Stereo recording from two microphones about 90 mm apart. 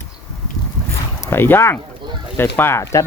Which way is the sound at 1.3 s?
25° left (ahead or behind).